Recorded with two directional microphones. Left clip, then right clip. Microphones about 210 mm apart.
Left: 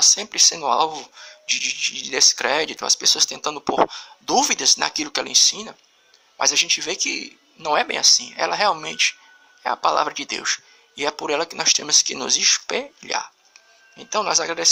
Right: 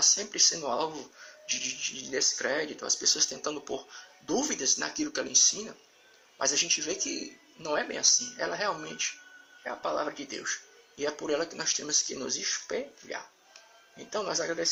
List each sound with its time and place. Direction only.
0.0 s speech: 30° left (ahead or behind)